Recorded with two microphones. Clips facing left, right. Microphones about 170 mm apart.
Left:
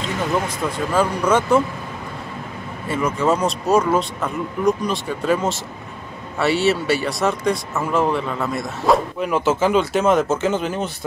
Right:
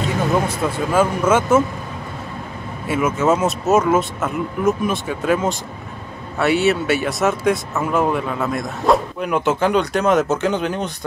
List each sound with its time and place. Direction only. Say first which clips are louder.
0.5 s speech: right 2 dB; 5° right (ahead or behind)
2.9 s speech: right 2 dB; 5° right (ahead or behind)